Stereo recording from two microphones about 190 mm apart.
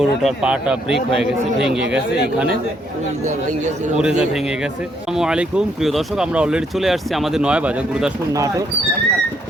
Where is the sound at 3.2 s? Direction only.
40° right (ahead or behind).